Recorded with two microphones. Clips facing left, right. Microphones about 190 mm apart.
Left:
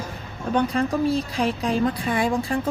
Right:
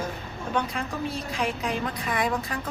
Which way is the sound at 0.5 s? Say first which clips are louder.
Left 8 dB; 35° left (ahead or behind).